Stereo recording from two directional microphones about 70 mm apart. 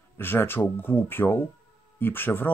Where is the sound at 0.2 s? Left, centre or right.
Left.